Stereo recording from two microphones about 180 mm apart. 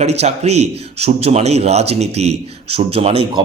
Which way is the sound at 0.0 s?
35° right (ahead or behind).